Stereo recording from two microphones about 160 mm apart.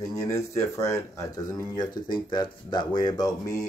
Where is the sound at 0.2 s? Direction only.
20° left (ahead or behind).